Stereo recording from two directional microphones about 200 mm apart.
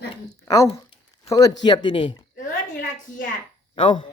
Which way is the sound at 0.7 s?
30° left (ahead or behind).